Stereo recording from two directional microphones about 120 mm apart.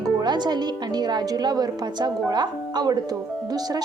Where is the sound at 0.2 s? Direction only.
35° right (ahead or behind).